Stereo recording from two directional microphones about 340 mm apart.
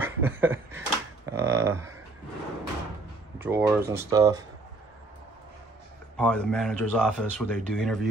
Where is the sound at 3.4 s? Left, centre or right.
Centre.